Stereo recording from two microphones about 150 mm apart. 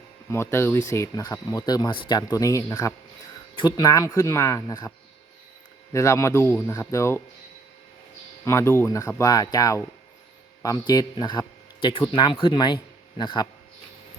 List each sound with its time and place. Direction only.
0.3 s speech: 15° left (ahead or behind)
5.9 s speech: 20° left (ahead or behind)
8.4 s speech: 20° left (ahead or behind)